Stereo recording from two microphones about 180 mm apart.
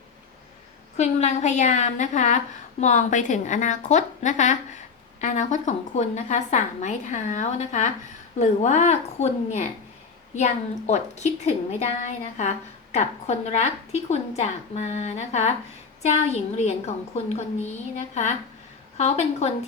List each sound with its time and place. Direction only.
0.9 s a woman's voice: 40° left (ahead or behind)